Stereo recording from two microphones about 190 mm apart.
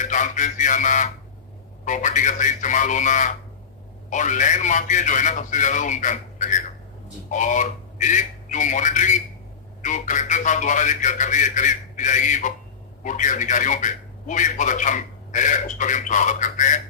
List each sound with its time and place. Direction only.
0.0 s a man's voice: 40° left (ahead or behind)